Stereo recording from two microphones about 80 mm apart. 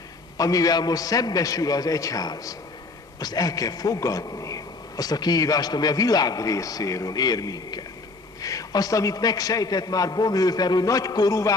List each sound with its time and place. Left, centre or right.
0.4 s a man's voice: left